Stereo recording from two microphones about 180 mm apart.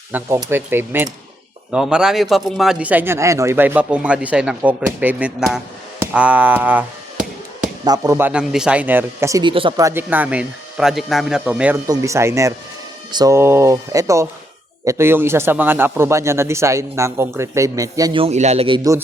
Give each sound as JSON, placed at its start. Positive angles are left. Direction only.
{"t": 0.1, "sound": "a man's voice", "side_deg": -15}
{"t": 7.9, "sound": "a man's voice", "side_deg": -20}
{"t": 8.3, "sound": "a man's voice", "side_deg": -5}